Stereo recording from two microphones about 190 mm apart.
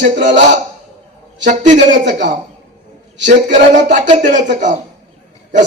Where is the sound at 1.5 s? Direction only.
40° right (ahead or behind).